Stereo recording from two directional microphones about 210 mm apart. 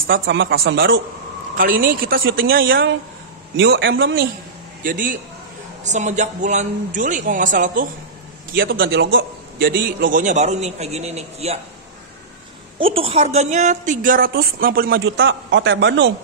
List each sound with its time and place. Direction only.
0.0 s speech: 65° right (ahead or behind)
1.6 s a woman's voice: 40° right (ahead or behind)
3.5 s speech: 60° right (ahead or behind)
4.8 s a woman's voice: 40° right (ahead or behind)
12.7 s a woman's voice: 25° right (ahead or behind); by 16.1 s 60° right (ahead or behind)